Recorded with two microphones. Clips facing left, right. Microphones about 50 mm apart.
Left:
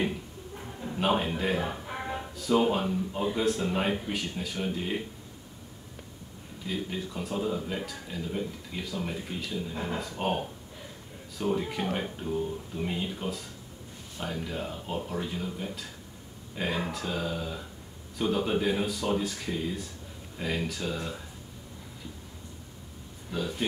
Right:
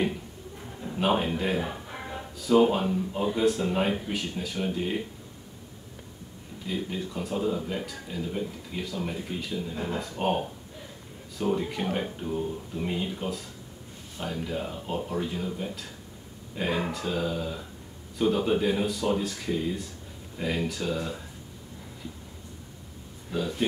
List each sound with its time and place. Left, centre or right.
0.8 s speech: centre
6.7 s speech: centre
23.3 s speech: centre